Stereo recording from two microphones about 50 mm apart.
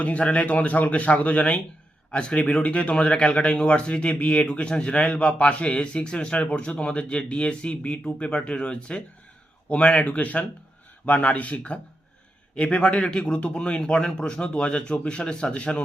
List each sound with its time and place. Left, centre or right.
0.0 s a man's voice: left